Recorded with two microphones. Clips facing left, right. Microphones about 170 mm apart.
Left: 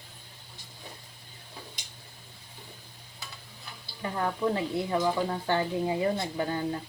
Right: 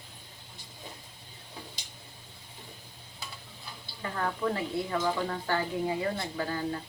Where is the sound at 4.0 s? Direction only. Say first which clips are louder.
Left 2 dB; 20° left (ahead or behind).